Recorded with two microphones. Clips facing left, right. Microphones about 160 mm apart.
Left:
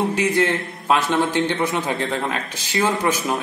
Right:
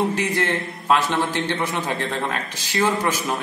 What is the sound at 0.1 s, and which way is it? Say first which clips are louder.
A man's voice: left 3 dB; 15° left (ahead or behind).